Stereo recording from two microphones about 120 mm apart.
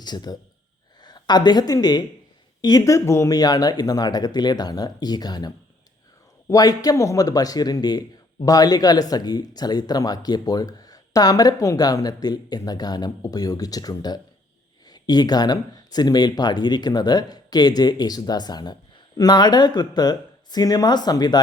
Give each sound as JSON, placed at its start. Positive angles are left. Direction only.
{"t": 0.0, "sound": "a woman's voice", "side_deg": 35}
{"t": 6.5, "sound": "speech", "side_deg": 30}